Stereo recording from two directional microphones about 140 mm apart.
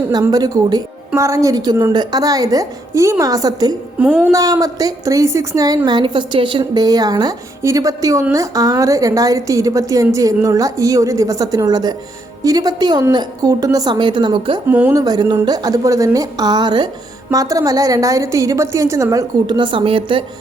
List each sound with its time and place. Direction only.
0.1 s a woman's voice: 25° right (ahead or behind)
4.0 s speech: 10° right (ahead or behind)
4.3 s a woman's voice: 25° right (ahead or behind)
14.7 s speech: 15° right (ahead or behind)
14.9 s a woman's voice: 30° right (ahead or behind)
19.5 s a woman's voice: 35° right (ahead or behind)